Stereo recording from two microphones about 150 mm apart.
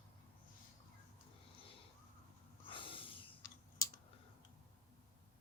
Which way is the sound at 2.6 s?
35° left (ahead or behind).